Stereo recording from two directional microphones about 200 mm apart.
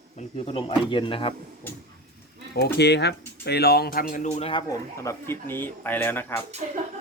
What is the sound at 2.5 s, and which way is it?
A man's voice, 55° left (ahead or behind).